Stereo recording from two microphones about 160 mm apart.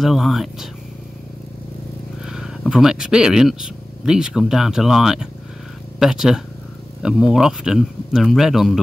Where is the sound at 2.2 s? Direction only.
5° right (ahead or behind).